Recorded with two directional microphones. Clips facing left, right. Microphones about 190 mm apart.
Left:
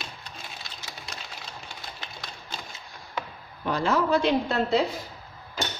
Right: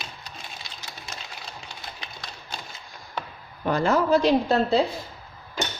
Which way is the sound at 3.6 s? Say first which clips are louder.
Right 3 dB; 50° right (ahead or behind).